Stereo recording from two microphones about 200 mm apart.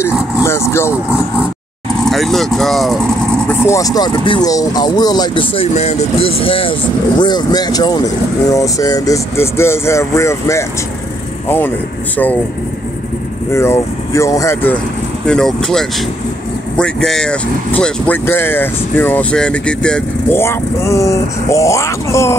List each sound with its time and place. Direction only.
0.0 s vehicle: 15° left (ahead or behind)
2.0 s vehicle: centre (ahead or behind)
3.4 s speech: 15° left (ahead or behind)
13.5 s speech: 15° left (ahead or behind)